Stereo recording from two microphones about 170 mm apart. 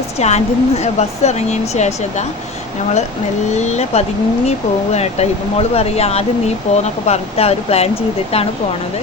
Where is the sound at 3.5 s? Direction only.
40° left (ahead or behind).